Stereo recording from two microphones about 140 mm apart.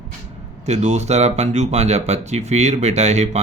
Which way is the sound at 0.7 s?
50° right (ahead or behind).